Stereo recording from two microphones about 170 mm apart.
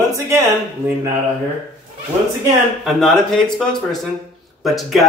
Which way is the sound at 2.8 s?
Centre (ahead or behind).